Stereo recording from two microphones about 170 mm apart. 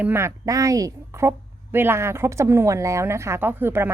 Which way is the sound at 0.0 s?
15° right (ahead or behind).